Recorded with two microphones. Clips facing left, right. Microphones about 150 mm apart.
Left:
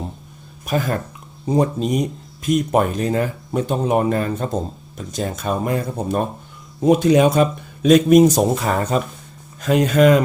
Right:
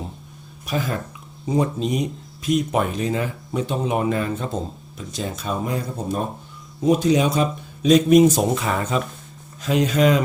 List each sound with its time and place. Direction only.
0.6 s a man's voice: 50° left (ahead or behind)